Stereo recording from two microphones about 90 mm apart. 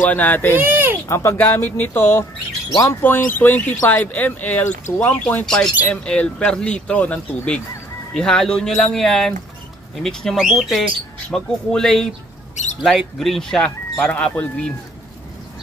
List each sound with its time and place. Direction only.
0.0 s speech: 15° left (ahead or behind)
0.6 s speech: 20° right (ahead or behind)
1.0 s speech: 35° left (ahead or behind); by 14.7 s 15° left (ahead or behind)